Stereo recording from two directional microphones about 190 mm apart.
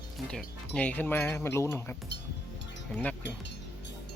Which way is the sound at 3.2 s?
65° left (ahead or behind).